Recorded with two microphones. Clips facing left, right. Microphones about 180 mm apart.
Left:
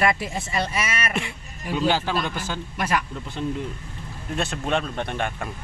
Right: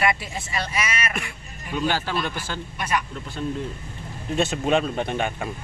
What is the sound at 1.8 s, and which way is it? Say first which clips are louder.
Speech: left 2 dB; 15° left (ahead or behind).